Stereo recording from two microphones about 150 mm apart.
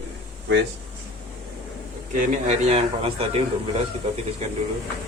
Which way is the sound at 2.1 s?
55° right (ahead or behind).